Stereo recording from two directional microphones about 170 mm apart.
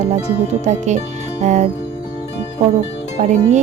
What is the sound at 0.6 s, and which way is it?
A woman's voice, 45° right (ahead or behind).